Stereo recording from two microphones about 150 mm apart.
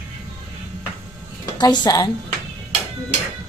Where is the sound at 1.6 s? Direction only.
25° left (ahead or behind).